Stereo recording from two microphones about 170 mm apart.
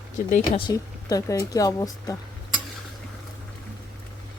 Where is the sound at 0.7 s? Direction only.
20° left (ahead or behind).